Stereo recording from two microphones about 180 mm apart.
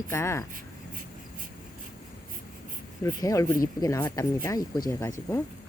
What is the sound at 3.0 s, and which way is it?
Speech, 20° left (ahead or behind).